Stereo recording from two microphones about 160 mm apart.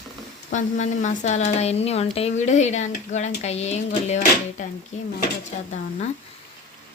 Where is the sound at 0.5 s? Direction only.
50° left (ahead or behind).